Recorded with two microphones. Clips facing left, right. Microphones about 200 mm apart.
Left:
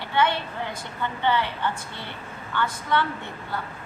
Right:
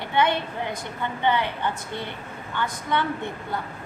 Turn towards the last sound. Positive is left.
turn(degrees=-15)  # may be behind; listen again after turning